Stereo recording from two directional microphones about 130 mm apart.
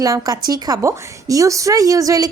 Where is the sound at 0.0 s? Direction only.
25° right (ahead or behind).